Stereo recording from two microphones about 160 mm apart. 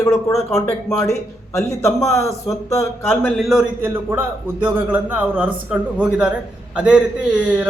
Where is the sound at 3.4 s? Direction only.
Centre (ahead or behind).